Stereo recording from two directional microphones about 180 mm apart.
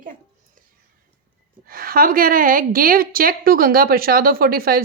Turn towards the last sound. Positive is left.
turn(degrees=-55)  # may be behind; listen again after turning